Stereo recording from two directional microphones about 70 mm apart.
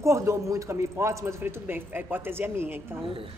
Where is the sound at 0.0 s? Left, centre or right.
Right.